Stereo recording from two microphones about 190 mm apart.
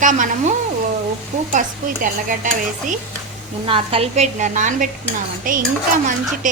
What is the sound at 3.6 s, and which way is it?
A woman's voice, 30° right (ahead or behind).